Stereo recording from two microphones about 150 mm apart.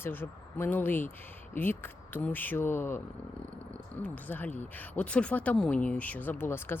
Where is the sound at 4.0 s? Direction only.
10° left (ahead or behind).